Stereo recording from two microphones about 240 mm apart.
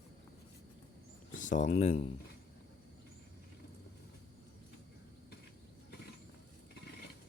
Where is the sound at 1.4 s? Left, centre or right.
Left.